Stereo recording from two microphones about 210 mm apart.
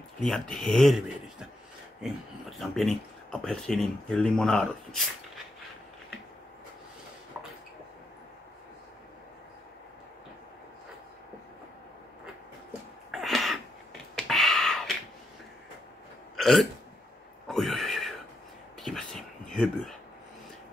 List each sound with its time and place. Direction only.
0.2 s speech: centre (ahead or behind)
7.3 s a sound: 10° right (ahead or behind)
13.1 s a sound: centre (ahead or behind)
16.3 s hiccup: centre (ahead or behind)
17.5 s neigh: centre (ahead or behind)
18.8 s whispering: centre (ahead or behind)